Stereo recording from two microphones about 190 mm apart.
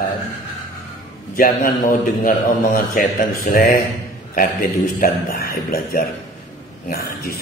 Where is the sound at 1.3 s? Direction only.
50° left (ahead or behind).